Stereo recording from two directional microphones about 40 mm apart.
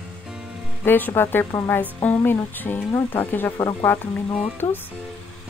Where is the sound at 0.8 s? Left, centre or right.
Left.